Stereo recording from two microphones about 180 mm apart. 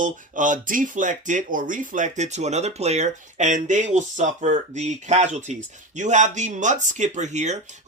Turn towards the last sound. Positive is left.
turn(degrees=-40)  # may be behind; listen again after turning